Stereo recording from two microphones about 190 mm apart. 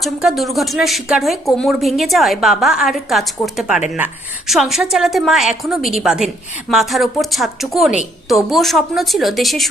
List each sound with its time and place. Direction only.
0.0 s speech: centre (ahead or behind)